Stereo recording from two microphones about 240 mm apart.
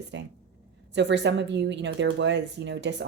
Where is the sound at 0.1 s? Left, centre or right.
Right.